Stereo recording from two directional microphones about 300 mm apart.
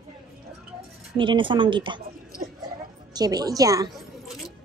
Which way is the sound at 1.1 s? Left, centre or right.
Centre.